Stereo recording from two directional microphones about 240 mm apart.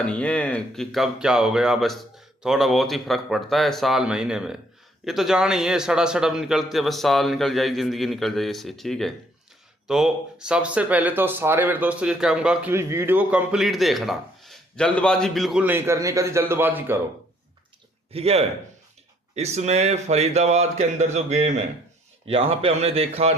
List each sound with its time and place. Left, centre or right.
0.0 s speech: centre
18.1 s speech: right